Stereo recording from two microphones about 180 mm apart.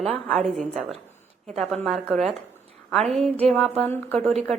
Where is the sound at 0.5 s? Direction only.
40° right (ahead or behind).